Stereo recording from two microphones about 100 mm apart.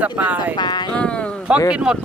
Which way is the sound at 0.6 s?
45° left (ahead or behind).